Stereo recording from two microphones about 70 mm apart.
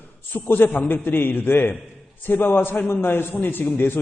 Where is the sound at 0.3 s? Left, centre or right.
Left.